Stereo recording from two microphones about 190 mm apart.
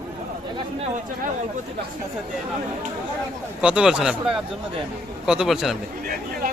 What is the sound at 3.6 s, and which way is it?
A man's voice, 5° right (ahead or behind).